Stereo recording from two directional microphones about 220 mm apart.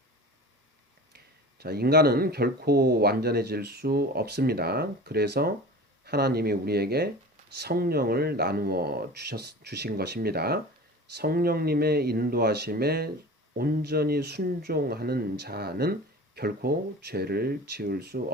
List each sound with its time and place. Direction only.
1.1 s speech: 45° right (ahead or behind)